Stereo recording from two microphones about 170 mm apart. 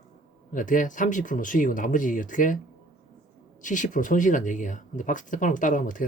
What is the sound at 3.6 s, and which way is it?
Speech, 50° left (ahead or behind).